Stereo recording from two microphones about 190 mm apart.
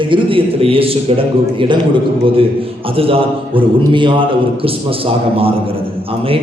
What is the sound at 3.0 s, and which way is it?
A man's voice, 30° right (ahead or behind).